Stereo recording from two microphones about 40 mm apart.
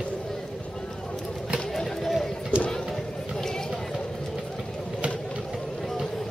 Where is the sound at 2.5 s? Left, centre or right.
Right.